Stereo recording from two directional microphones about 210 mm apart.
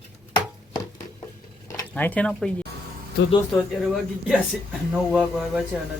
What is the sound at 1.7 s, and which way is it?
Speech, 10° left (ahead or behind).